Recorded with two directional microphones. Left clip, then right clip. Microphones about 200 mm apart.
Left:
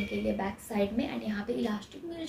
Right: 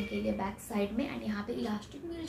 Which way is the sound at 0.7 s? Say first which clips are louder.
Left 4 dB; centre (ahead or behind).